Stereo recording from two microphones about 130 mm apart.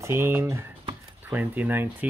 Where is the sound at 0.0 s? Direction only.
20° right (ahead or behind).